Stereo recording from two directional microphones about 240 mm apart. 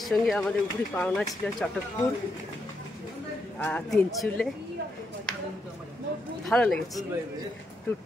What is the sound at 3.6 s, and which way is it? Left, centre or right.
Speech, centre.